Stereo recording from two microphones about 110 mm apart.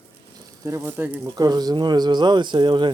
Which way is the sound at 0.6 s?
25° right (ahead or behind).